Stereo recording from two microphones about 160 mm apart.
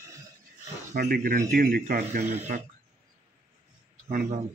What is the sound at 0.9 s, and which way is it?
Speech, 85° right.